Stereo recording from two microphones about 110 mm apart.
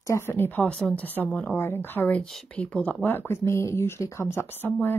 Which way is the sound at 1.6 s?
20° left (ahead or behind).